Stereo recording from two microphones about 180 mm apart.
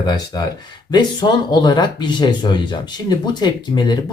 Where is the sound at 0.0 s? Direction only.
25° left (ahead or behind).